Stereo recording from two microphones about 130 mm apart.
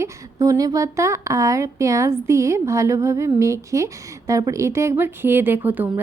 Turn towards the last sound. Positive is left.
turn(degrees=-15)  # may be behind; listen again after turning